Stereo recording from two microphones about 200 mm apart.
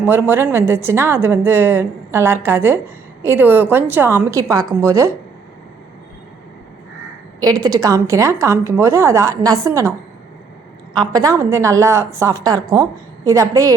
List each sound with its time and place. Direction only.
0.0 s a woman's voice: 10° right (ahead or behind)
7.4 s a woman's voice: 20° right (ahead or behind)
10.9 s a woman's voice: 20° right (ahead or behind)